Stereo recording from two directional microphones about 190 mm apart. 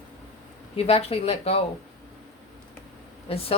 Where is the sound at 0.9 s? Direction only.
30° left (ahead or behind).